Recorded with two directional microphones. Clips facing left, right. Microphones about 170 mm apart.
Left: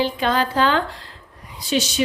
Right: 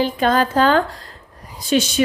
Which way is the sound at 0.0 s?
45° right (ahead or behind).